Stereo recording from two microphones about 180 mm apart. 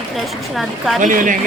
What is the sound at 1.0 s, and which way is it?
Speech, 45° right (ahead or behind).